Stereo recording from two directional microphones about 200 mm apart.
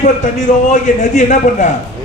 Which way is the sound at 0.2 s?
35° left (ahead or behind).